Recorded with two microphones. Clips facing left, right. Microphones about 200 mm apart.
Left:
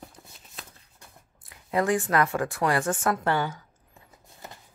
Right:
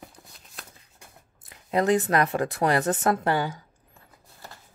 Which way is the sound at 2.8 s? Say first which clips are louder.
Right 2 dB; 40° right (ahead or behind).